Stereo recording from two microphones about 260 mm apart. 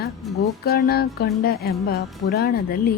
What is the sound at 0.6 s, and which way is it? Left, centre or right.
Music, left.